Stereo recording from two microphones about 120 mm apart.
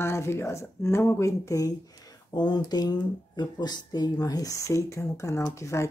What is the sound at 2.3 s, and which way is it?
Speech, 35° left (ahead or behind).